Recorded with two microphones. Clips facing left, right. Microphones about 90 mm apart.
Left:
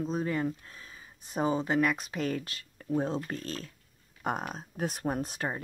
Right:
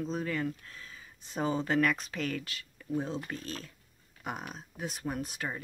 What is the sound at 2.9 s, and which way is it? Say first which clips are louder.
Speech: left 4 dB; 45° left (ahead or behind).